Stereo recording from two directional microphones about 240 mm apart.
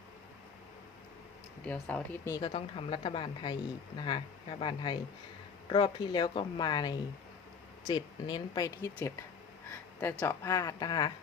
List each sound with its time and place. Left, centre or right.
1.6 s speech: centre